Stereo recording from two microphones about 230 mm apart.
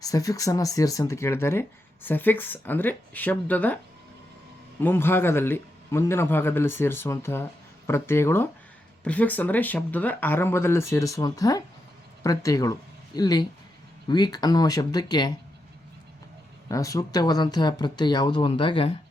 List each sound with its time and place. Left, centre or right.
0.0 s speech: centre
4.8 s speech: centre
16.6 s speech: centre